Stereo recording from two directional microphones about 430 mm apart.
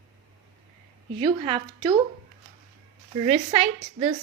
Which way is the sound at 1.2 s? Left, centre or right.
Centre.